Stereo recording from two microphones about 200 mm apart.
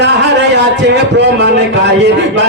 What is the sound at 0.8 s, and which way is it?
Speech, 60° right (ahead or behind).